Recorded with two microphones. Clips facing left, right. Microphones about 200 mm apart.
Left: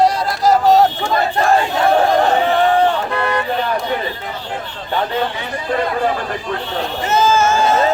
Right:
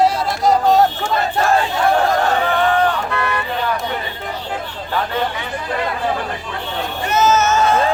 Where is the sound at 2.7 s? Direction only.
30° left (ahead or behind).